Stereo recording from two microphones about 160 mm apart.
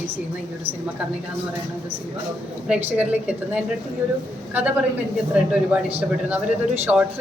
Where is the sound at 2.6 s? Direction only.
5° right (ahead or behind).